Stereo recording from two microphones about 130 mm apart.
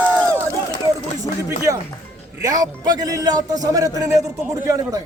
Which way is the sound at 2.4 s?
30° right (ahead or behind).